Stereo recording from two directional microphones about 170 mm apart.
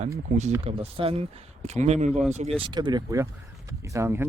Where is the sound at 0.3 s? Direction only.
45° right (ahead or behind).